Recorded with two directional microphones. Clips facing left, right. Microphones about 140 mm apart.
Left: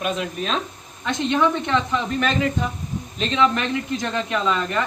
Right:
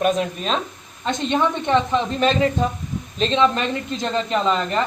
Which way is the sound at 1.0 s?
20° right (ahead or behind).